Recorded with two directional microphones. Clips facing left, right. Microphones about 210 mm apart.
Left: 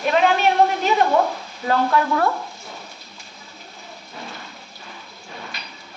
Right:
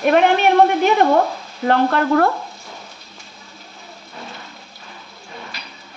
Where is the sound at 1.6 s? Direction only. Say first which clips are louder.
Right 3 dB; 60° right (ahead or behind).